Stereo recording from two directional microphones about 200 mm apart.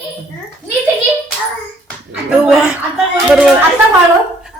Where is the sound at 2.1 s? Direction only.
5° right (ahead or behind).